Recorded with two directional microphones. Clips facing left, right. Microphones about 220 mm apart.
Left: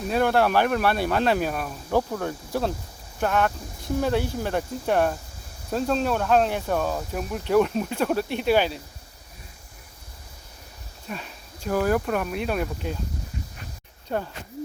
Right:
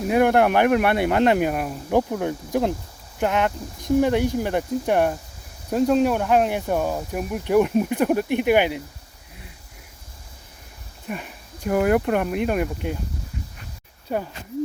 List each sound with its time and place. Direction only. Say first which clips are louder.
0.1 s speech: right 4 dB; 15° right (ahead or behind)
11.1 s speech: right 4 dB; 15° right (ahead or behind)
14.1 s speech: right 2 dB; 10° right (ahead or behind)